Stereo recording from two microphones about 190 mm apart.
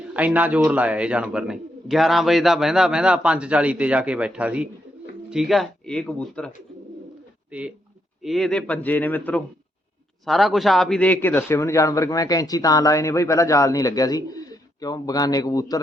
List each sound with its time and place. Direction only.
0.1 s a man's voice: 5° right (ahead or behind)
7.5 s a man's voice: 5° right (ahead or behind); by 15.8 s 20° left (ahead or behind)